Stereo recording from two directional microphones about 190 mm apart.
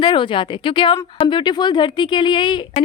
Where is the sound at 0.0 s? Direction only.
25° left (ahead or behind).